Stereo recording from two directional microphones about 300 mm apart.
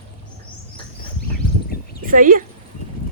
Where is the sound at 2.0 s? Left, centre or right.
Right.